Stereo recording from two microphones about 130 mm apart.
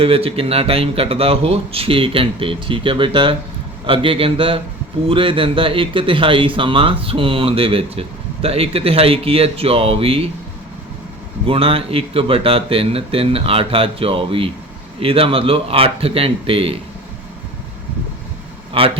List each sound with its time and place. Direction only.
0.0 s a man's voice: 45° right (ahead or behind)
11.4 s a man's voice: 45° right (ahead or behind)
18.8 s a man's voice: 45° right (ahead or behind)